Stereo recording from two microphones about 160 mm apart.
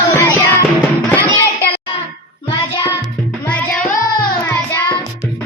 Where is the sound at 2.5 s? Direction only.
25° left (ahead or behind).